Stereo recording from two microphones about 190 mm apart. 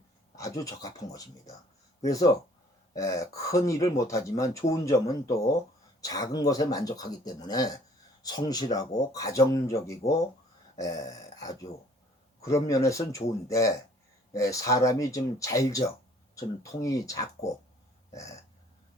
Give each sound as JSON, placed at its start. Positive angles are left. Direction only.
{"t": 0.3, "sound": "speech", "side_deg": 15}